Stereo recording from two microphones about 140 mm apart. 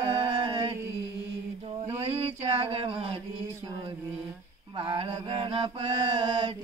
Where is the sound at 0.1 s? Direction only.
40° right (ahead or behind).